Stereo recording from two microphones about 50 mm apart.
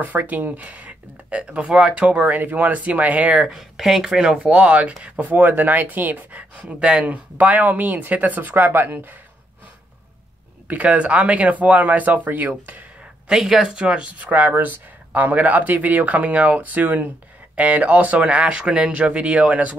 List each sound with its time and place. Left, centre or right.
0.0 s speech: right
3.3 s speech: centre
4.5 s speech: right
10.7 s speech: right
13.3 s speech: centre
14.5 s speech: right